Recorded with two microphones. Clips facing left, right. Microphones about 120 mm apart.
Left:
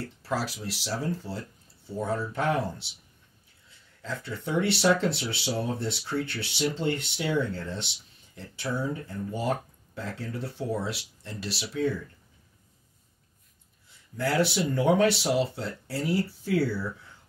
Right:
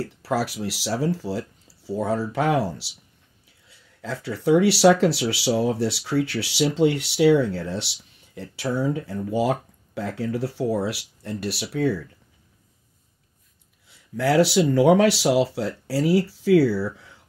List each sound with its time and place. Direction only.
0.2 s speech: 70° right (ahead or behind); by 2.1 s 90° right
3.6 s speech: 75° right (ahead or behind); by 6.9 s 90° right
7.0 s speech: 75° right (ahead or behind)
8.4 s speech: 80° right
13.8 s speech: 70° right (ahead or behind); by 16.8 s 90° right